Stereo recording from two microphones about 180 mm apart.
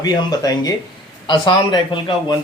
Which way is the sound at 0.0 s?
20° left (ahead or behind).